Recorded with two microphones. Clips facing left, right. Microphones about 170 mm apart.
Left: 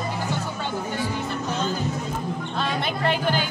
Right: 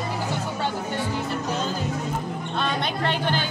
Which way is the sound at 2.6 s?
5° left (ahead or behind).